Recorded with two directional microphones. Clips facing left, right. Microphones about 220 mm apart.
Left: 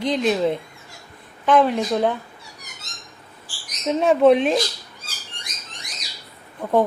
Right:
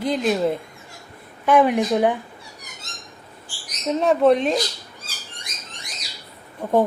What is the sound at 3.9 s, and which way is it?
Speech, centre (ahead or behind).